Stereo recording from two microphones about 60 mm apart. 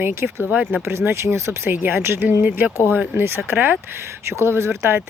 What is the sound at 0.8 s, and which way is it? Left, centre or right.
Speech, right.